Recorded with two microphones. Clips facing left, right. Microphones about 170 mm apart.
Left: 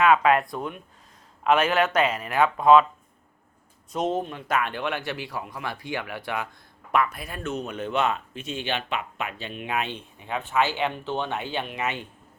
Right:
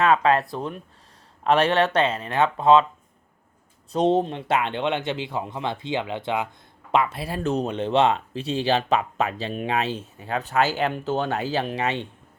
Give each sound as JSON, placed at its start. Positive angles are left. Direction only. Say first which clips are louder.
{"t": 0.0, "sound": "speech", "louder": "even", "side_deg": -30}
{"t": 3.9, "sound": "speech", "louder": "right 6 dB", "side_deg": -35}